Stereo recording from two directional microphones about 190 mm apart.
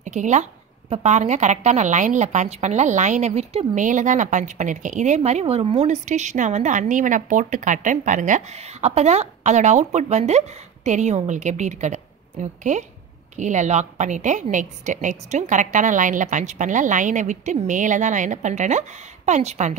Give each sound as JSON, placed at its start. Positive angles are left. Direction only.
{"t": 0.0, "sound": "a woman's voice", "side_deg": -40}